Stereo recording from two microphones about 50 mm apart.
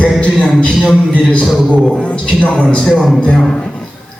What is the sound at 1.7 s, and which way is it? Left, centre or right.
Speech, centre.